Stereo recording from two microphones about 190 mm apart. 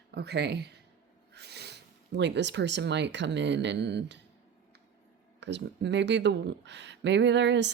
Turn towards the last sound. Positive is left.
turn(degrees=-65)  # may be behind; listen again after turning